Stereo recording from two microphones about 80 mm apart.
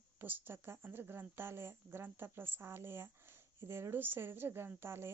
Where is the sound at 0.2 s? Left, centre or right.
Right.